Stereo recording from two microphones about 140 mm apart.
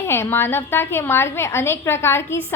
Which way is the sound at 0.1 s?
15° left (ahead or behind).